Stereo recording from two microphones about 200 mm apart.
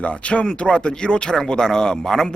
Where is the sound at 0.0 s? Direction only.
5° left (ahead or behind).